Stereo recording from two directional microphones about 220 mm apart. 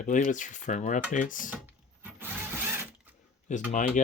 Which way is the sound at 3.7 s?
35° left (ahead or behind).